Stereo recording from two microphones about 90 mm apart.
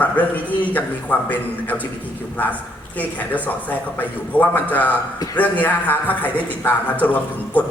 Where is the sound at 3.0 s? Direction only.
20° left (ahead or behind).